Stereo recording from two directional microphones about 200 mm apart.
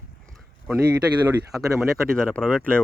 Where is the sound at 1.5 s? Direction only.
Centre (ahead or behind).